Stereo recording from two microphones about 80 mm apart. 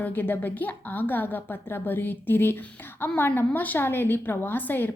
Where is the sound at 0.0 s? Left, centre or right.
Left.